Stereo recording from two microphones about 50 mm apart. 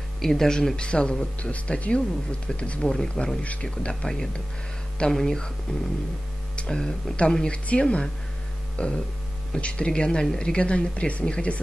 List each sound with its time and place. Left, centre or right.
0.2 s speech: centre; by 2.8 s left
2.8 s speech: centre
5.7 s speech: left